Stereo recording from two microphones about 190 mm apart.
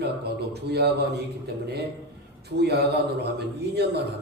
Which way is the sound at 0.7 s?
60° right (ahead or behind).